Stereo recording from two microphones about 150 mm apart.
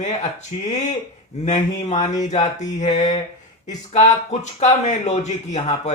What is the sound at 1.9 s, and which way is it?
Speech, 50° left (ahead or behind).